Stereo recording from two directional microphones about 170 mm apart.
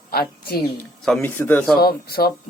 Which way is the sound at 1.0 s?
5° left (ahead or behind).